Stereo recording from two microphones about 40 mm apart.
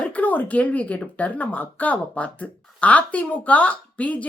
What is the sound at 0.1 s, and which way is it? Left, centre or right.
Speech, left.